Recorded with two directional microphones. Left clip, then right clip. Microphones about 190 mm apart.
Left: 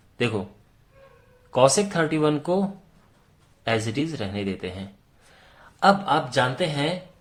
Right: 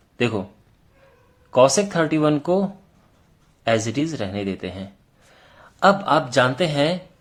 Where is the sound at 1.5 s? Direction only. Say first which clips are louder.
Right 3 dB; 20° right (ahead or behind); by 6.9 s 40° right (ahead or behind).